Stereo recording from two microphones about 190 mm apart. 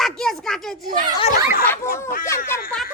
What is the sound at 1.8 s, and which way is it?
Speech, 15° left (ahead or behind).